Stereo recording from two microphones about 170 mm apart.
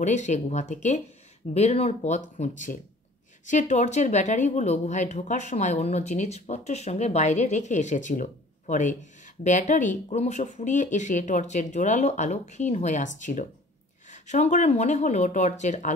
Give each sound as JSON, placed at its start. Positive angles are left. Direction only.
{"t": 0.0, "sound": "speech", "side_deg": 45}